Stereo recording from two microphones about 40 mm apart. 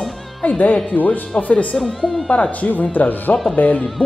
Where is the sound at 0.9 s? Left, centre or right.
Left.